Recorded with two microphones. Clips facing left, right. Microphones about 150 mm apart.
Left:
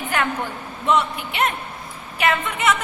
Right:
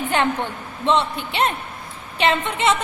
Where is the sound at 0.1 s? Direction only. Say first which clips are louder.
Right 2 dB; 25° right (ahead or behind).